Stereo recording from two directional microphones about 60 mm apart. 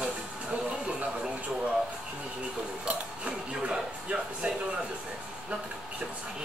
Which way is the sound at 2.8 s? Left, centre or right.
Centre.